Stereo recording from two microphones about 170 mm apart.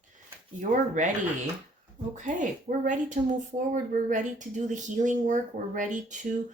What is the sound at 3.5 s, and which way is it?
Speech, 35° right (ahead or behind).